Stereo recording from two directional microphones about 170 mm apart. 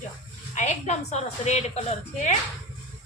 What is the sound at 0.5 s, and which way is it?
A woman's voice, 45° left (ahead or behind).